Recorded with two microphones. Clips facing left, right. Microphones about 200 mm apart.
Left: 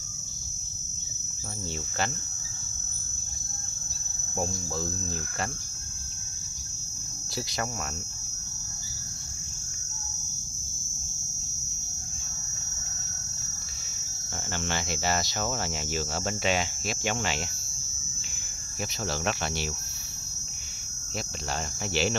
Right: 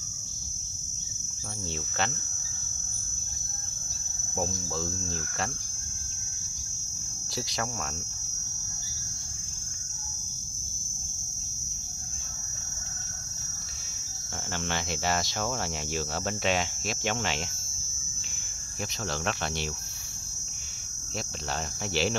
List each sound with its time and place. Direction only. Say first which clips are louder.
14.5 s hum: even; centre (ahead or behind)
19.0 s hum: left 1 dB; 5° left (ahead or behind)